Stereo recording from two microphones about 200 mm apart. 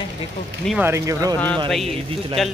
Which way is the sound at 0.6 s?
10° right (ahead or behind).